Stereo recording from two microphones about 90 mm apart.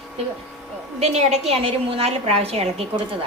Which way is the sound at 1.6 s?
90° right.